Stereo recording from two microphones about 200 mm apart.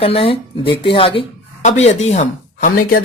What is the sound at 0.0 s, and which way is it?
Speech, 30° left (ahead or behind).